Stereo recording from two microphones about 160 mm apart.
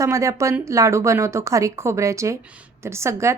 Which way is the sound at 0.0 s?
20° right (ahead or behind).